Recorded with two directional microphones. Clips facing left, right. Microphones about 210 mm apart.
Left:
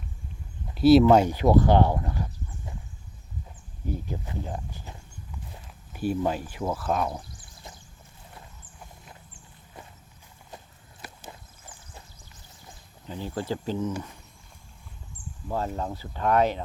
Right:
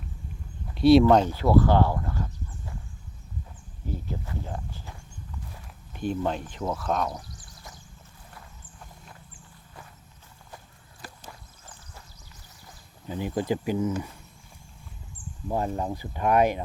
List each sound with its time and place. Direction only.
0.7 s a sound: 5° left (ahead or behind)
1.0 s speech: 15° left (ahead or behind)
3.8 s speech: 15° left (ahead or behind)
5.9 s speech: 5° left (ahead or behind)
7.1 s a sound: 25° left (ahead or behind)
13.1 s speech: 15° right (ahead or behind)
15.4 s speech: 15° right (ahead or behind)